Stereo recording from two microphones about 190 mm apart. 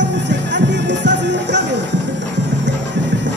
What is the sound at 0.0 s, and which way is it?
Music, 70° right (ahead or behind).